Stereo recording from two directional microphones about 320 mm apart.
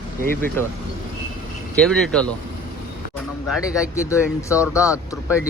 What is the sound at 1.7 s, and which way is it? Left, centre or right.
Speech, centre.